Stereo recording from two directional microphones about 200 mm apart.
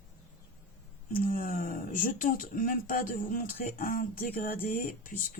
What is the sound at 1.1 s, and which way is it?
Speech, 45° left (ahead or behind).